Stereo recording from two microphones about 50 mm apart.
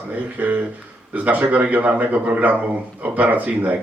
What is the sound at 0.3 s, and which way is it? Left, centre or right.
Speech, right.